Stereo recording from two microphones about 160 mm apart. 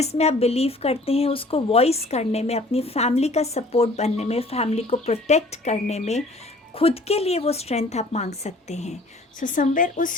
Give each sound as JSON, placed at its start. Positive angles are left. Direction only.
{"t": 0.0, "sound": "speech", "side_deg": 40}
{"t": 9.4, "sound": "speech", "side_deg": 55}